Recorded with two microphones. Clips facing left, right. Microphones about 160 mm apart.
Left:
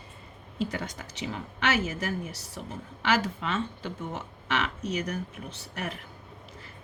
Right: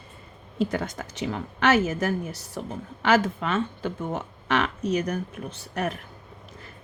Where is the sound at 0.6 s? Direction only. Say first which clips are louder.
Right 6 dB; 50° right (ahead or behind).